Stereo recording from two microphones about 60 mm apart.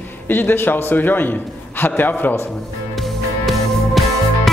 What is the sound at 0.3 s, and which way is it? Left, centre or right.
A man's voice, left.